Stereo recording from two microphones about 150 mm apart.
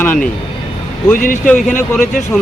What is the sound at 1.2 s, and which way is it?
Speech, 65° left (ahead or behind).